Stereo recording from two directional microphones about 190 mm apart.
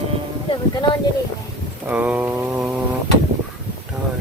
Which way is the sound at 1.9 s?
10° right (ahead or behind).